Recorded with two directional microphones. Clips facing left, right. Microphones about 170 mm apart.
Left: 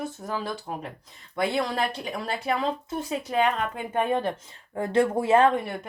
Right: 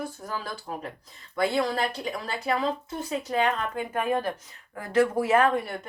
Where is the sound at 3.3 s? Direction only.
25° left (ahead or behind).